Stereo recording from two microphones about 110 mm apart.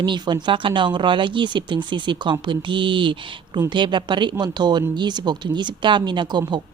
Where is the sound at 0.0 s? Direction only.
45° right (ahead or behind).